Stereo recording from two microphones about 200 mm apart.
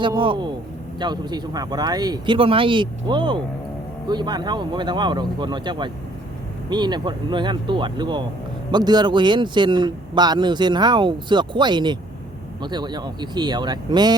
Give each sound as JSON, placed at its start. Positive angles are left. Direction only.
{"t": 0.0, "sound": "speech", "side_deg": -25}